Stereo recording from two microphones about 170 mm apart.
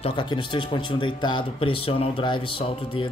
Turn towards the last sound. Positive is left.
turn(degrees=30)  # may be behind; listen again after turning